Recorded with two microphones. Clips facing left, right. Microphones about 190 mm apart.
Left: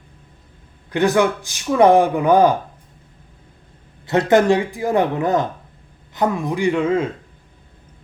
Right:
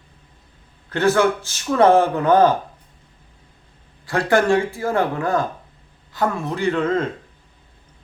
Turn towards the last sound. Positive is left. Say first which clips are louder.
# left 2 dB
turn(degrees=10)  # may be behind; listen again after turning